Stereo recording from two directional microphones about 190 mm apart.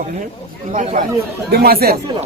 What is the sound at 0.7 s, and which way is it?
Speech, 40° right (ahead or behind).